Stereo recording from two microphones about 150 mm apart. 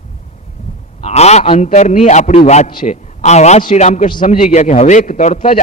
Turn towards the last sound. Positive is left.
turn(degrees=55)  # may be behind; listen again after turning